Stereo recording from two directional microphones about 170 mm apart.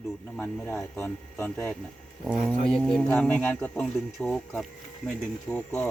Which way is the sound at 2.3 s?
5° right (ahead or behind).